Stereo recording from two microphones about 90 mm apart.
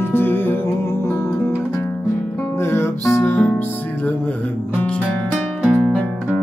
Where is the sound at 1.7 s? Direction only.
30° left (ahead or behind).